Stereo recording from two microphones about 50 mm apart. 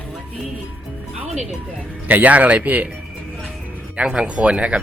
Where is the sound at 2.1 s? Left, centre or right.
Right.